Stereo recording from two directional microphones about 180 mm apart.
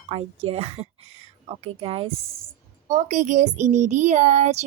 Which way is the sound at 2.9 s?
40° right (ahead or behind).